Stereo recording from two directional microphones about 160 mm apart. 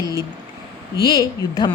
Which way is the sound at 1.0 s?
20° left (ahead or behind).